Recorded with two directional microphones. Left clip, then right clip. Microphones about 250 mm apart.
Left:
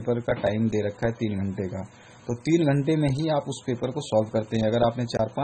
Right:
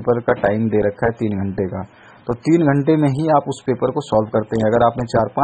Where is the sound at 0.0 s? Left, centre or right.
Centre.